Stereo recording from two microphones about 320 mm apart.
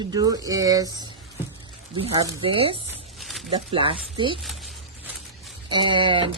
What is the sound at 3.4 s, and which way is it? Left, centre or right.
Speech, centre.